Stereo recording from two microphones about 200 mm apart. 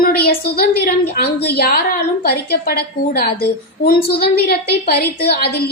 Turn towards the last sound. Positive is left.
turn(degrees=50)  # may be behind; listen again after turning